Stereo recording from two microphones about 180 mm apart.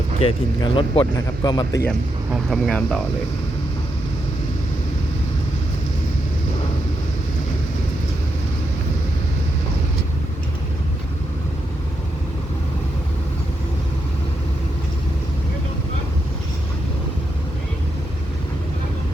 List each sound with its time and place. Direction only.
0.2 s speech: 30° left (ahead or behind)
1.9 s speech: centre (ahead or behind)